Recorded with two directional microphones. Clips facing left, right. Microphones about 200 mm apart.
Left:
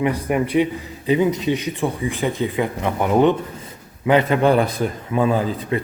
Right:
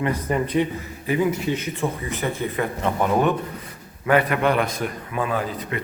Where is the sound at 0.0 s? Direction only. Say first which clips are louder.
Left 3 dB; 10° left (ahead or behind).